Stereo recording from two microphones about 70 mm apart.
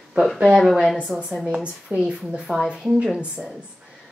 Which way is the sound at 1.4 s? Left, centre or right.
Centre.